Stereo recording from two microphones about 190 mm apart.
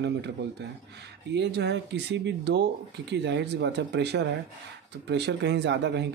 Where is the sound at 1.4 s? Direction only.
65° right (ahead or behind).